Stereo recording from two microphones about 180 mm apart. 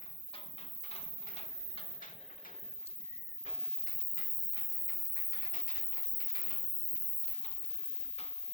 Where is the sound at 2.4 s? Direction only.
50° left (ahead or behind).